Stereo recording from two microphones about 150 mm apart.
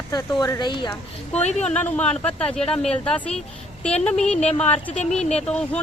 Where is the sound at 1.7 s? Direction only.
10° left (ahead or behind).